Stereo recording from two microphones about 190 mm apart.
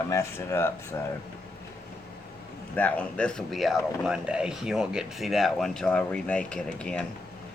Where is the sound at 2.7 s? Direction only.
5° left (ahead or behind).